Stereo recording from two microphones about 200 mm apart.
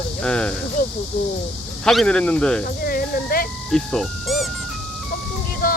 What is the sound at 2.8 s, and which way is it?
Speech, 50° left (ahead or behind).